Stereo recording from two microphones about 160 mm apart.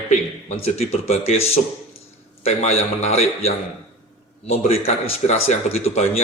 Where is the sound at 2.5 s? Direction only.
45° left (ahead or behind).